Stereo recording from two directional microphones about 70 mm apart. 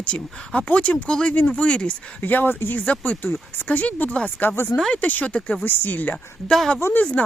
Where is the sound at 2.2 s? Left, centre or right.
Left.